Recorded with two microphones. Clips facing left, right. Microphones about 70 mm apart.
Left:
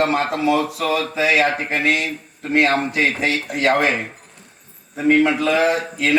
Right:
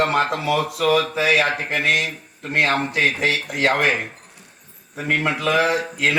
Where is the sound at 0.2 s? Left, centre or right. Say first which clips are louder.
Left 2 dB; left.